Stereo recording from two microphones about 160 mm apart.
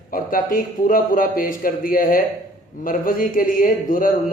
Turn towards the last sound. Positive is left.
turn(degrees=60)  # may be behind; listen again after turning